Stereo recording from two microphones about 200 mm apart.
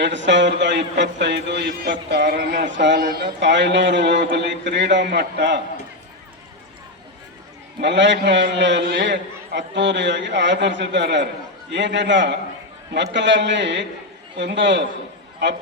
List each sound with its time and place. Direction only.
0.0 s a man's voice: 65° right (ahead or behind)
3.0 s speech: 45° right (ahead or behind)
3.4 s a man's voice: 60° right (ahead or behind)
7.8 s a man's voice: 60° right (ahead or behind)